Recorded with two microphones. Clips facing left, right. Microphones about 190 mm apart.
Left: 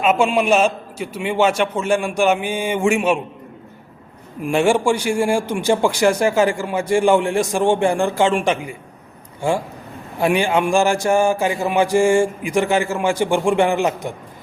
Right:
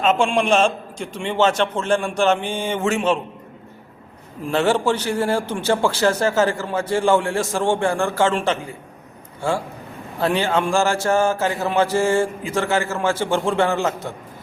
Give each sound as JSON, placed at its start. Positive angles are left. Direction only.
{"t": 0.0, "sound": "a man's voice", "side_deg": 10}
{"t": 4.4, "sound": "a man's voice", "side_deg": 10}